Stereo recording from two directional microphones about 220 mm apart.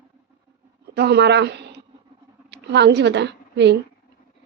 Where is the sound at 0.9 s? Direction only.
50° right (ahead or behind).